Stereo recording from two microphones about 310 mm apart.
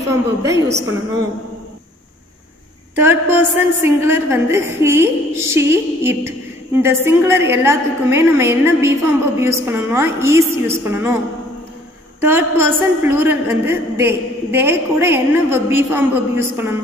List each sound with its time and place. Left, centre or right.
0.1 s a woman's voice: centre
3.0 s a woman's voice: centre
12.3 s a woman's voice: centre